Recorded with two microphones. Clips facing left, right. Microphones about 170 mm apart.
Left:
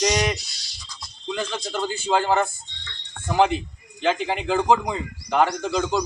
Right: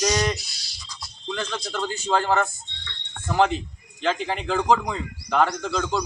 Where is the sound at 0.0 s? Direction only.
15° left (ahead or behind).